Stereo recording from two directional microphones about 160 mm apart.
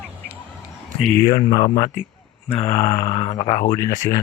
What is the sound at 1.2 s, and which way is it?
Speech, 25° left (ahead or behind).